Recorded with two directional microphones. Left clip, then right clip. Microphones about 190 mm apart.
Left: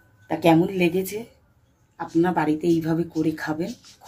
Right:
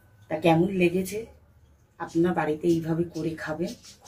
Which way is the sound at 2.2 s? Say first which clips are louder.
Left 4 dB; 50° left (ahead or behind).